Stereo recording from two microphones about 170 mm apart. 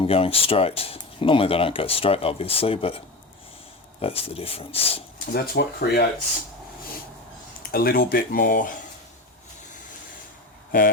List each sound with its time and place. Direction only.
0.0 s speech: 35° left (ahead or behind)
4.0 s speech: 35° left (ahead or behind)
5.2 s speech: 65° left (ahead or behind)
7.7 s speech: 60° left (ahead or behind)
10.7 s speech: 60° left (ahead or behind)